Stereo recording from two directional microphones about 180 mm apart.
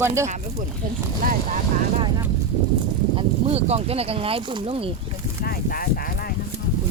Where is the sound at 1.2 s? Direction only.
55° right (ahead or behind).